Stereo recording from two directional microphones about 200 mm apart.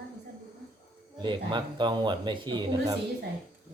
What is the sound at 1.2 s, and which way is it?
Speech, 25° right (ahead or behind).